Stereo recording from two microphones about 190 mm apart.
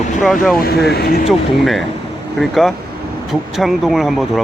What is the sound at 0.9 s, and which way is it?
Speech, 55° left (ahead or behind).